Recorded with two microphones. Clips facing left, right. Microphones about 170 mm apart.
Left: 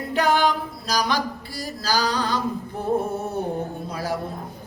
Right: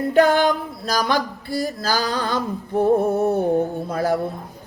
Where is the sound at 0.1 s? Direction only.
55° right (ahead or behind).